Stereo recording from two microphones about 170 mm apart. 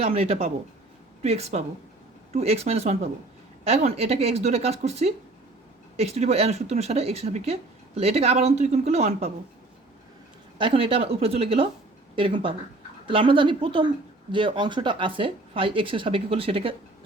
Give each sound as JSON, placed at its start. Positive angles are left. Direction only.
{"t": 0.0, "sound": "speech", "side_deg": -35}
{"t": 10.6, "sound": "speech", "side_deg": -30}